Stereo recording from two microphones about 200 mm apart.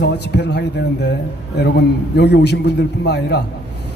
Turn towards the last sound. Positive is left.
turn(degrees=55)  # may be behind; listen again after turning